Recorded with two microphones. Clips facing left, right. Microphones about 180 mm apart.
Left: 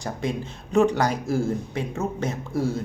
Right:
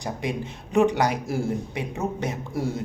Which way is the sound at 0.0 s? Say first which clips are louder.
Left 1 dB; 15° right (ahead or behind).